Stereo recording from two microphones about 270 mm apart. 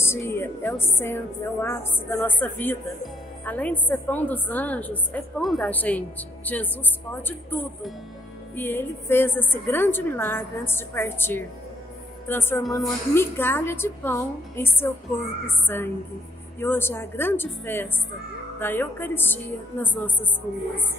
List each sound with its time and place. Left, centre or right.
0.0 s a woman's voice: centre